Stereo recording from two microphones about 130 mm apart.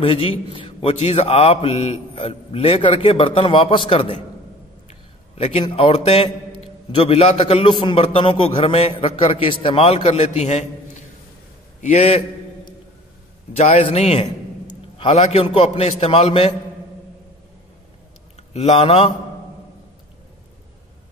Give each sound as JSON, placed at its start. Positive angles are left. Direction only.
{"t": 0.0, "sound": "mantra", "side_deg": 45}
{"t": 5.4, "sound": "a man's voice", "side_deg": 55}
{"t": 5.8, "sound": "mantra", "side_deg": 50}
{"t": 11.8, "sound": "a man's voice", "side_deg": 55}
{"t": 13.6, "sound": "a man's voice", "side_deg": 65}
{"t": 13.8, "sound": "mantra", "side_deg": 50}
{"t": 18.5, "sound": "mantra", "side_deg": 50}